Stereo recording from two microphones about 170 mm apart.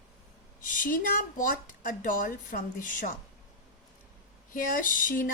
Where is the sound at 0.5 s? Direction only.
50° left (ahead or behind).